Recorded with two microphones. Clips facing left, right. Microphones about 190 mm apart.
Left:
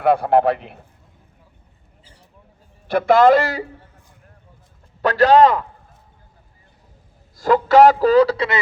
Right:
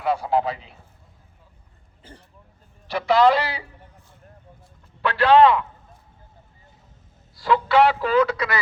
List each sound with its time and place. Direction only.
0.0 s a man's voice: 60° left (ahead or behind)
2.8 s a man's voice: 50° left (ahead or behind)
5.0 s a man's voice: 40° left (ahead or behind)
7.3 s a man's voice: 45° left (ahead or behind)